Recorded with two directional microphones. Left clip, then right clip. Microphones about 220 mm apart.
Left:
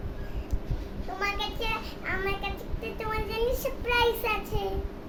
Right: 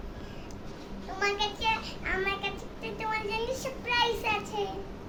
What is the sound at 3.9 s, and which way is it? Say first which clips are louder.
Child singing: left 2 dB; 15° left (ahead or behind).